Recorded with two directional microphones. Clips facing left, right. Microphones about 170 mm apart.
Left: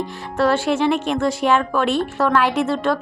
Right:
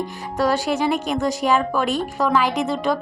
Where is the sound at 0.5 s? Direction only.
40° right (ahead or behind).